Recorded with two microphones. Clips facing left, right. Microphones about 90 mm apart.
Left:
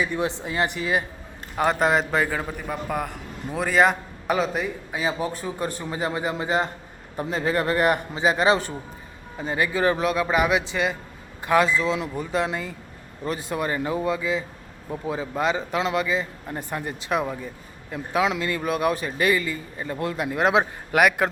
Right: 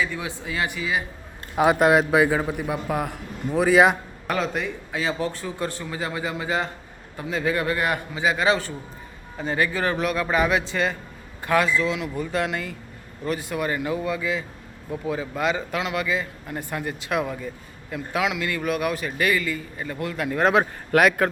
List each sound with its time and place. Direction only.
0.2 s speech: 35° left (ahead or behind)
1.5 s a man's voice: 10° right (ahead or behind)
4.3 s speech: 5° left (ahead or behind)
4.9 s a man's voice: 15° left (ahead or behind)
20.3 s speech: 15° left (ahead or behind)